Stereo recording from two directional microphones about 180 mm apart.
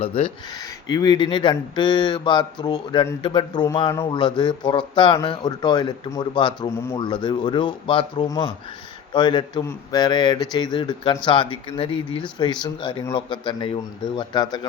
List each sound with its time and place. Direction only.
0.0 s speech: 30° left (ahead or behind)